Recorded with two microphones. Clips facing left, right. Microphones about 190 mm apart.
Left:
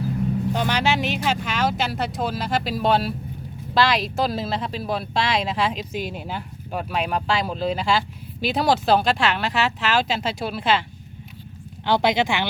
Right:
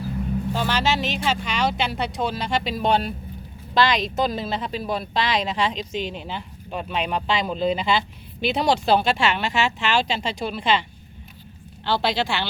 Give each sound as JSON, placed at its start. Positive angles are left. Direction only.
{"t": 0.5, "sound": "speech", "side_deg": 15}
{"t": 11.9, "sound": "speech", "side_deg": 20}